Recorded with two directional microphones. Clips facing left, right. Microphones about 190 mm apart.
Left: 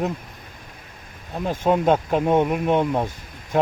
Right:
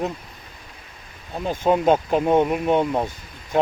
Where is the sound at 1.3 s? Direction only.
Centre (ahead or behind).